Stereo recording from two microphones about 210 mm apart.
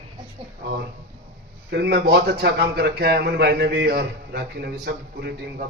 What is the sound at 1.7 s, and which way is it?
A man's voice, 50° right (ahead or behind).